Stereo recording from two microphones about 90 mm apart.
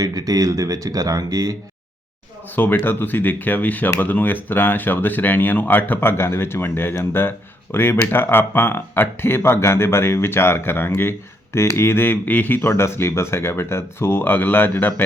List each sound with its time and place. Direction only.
0.0 s speech: 45° right (ahead or behind)
2.5 s speech: 20° left (ahead or behind)